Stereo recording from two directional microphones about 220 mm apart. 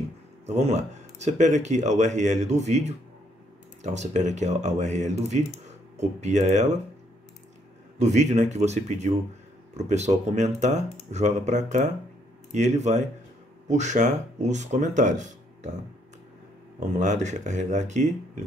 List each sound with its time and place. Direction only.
0.6 s speech: 30° right (ahead or behind)
8.0 s speech: 30° right (ahead or behind)
17.0 s speech: 35° right (ahead or behind)